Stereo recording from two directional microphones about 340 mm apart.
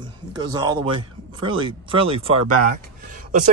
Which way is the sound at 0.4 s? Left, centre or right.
Centre.